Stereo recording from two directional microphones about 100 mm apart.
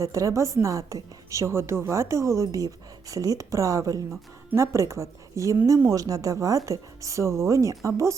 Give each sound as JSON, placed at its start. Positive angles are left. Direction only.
{"t": 0.0, "sound": "a woman's voice", "side_deg": -35}